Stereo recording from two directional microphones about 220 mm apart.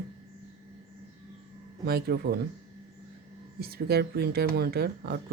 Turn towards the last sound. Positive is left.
turn(degrees=-45)  # may be behind; listen again after turning